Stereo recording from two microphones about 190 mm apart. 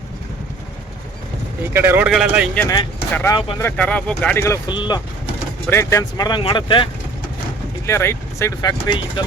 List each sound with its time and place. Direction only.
1.7 s speech: 10° right (ahead or behind)
2.6 s speech: 20° left (ahead or behind)
3.6 s speech: 10° left (ahead or behind); by 6.8 s 25° left (ahead or behind)
7.9 s speech: 15° left (ahead or behind)
8.9 s speech: 25° left (ahead or behind)